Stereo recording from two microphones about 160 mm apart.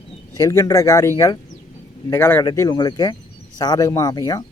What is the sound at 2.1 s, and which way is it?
Speech, 15° left (ahead or behind).